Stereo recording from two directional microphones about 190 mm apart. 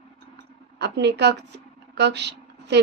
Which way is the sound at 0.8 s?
65° right (ahead or behind).